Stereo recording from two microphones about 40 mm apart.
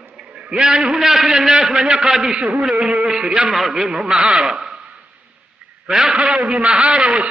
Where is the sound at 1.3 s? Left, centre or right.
Centre.